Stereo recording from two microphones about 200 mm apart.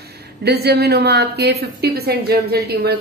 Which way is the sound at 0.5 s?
50° right (ahead or behind).